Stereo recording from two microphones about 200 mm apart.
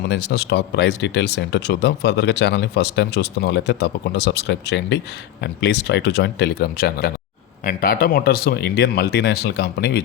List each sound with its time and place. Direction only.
0.1 s speech: 60° left (ahead or behind)